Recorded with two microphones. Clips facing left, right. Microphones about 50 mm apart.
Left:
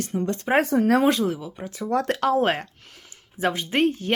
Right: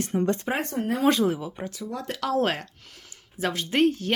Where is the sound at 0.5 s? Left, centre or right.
Left.